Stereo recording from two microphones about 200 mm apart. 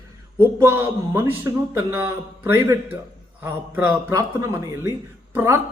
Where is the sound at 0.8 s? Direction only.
10° right (ahead or behind).